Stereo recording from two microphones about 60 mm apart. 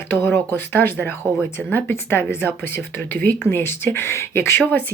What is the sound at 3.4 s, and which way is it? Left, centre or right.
Speech, left.